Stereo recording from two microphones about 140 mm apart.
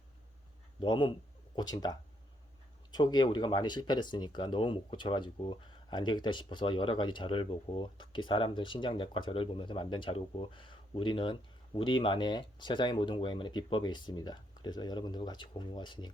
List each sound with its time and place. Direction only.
0.8 s speech: 35° left (ahead or behind)